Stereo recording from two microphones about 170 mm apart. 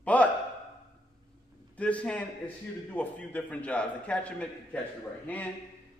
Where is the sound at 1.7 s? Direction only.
10° left (ahead or behind).